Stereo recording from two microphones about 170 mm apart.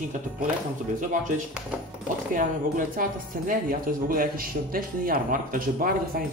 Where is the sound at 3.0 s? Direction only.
55° right (ahead or behind).